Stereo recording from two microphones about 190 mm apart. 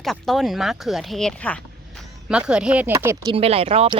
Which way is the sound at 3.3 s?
30° right (ahead or behind).